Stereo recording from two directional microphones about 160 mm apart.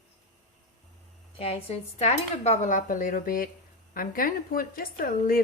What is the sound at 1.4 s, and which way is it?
A woman's voice, 40° left (ahead or behind).